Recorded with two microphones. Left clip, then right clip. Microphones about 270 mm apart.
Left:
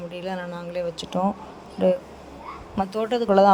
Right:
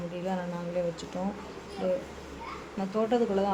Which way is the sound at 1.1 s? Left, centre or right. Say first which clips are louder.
Left 15 dB; left.